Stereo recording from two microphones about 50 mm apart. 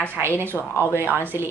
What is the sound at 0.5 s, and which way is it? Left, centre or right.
Speech, centre.